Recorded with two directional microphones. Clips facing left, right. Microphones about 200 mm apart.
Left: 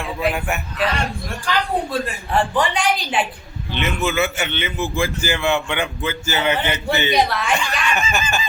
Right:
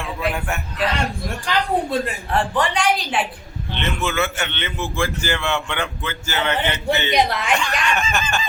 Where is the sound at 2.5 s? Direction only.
Centre (ahead or behind).